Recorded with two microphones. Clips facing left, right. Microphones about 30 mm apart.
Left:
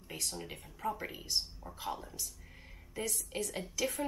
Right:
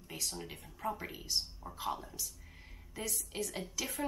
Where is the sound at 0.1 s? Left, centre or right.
Centre.